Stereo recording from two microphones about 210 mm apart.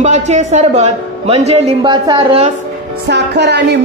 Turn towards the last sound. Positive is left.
turn(degrees=-55)  # may be behind; listen again after turning